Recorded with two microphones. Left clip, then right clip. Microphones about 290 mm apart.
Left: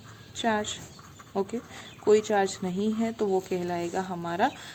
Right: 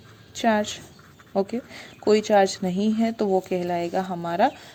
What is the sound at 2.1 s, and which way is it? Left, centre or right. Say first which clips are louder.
Speech: right 4 dB; centre.